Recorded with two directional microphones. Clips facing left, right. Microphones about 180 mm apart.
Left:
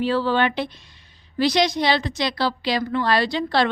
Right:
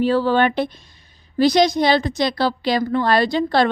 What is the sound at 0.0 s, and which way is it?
A woman's voice, 45° right (ahead or behind).